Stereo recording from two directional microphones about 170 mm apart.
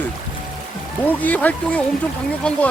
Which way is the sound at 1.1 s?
10° left (ahead or behind).